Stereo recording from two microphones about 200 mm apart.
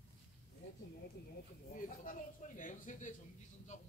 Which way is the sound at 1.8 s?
40° left (ahead or behind).